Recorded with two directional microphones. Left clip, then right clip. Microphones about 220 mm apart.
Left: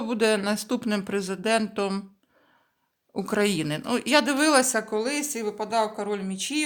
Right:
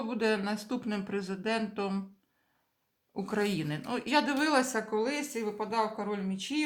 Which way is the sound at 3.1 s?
50° left (ahead or behind).